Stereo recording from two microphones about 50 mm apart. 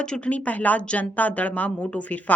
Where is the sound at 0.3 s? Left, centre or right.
Left.